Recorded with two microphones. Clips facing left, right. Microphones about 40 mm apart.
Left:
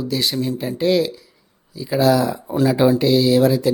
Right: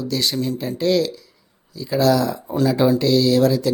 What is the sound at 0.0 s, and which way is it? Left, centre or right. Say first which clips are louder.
Speech: left 1 dB; centre.